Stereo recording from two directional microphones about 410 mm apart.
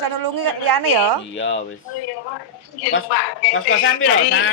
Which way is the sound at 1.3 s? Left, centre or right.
Left.